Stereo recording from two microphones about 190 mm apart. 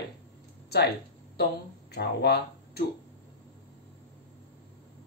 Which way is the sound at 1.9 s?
60° left (ahead or behind).